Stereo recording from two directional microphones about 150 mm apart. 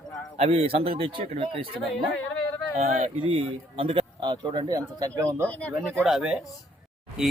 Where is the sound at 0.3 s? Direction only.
40° right (ahead or behind).